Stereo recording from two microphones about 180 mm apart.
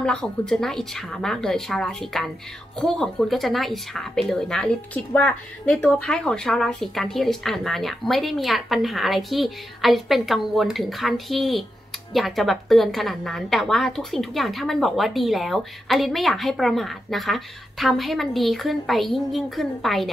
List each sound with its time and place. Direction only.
0.0 s speech: 5° left (ahead or behind)